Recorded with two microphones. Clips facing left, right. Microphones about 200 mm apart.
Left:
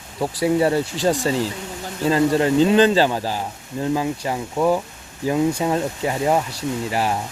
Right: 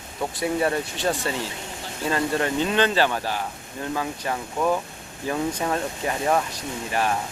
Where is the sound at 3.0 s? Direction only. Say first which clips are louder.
Left 4 dB; 15° left (ahead or behind).